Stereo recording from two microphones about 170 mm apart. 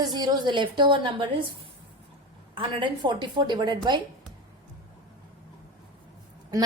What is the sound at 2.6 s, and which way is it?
A woman's voice, 30° right (ahead or behind).